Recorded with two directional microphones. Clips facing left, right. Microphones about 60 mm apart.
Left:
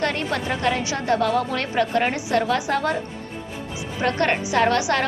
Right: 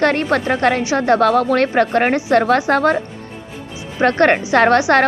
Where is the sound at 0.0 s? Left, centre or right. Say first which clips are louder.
Right 8 dB; right.